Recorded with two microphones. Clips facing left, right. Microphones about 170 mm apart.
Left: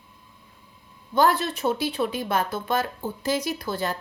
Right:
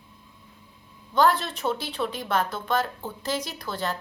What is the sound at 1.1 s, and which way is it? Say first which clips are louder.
Speech: left 1 dB; 10° left (ahead or behind).